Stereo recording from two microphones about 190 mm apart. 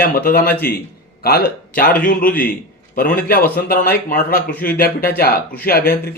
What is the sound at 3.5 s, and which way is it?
A man's voice, 50° left (ahead or behind).